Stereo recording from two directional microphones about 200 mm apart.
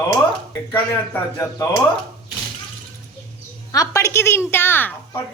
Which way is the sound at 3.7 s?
15° left (ahead or behind).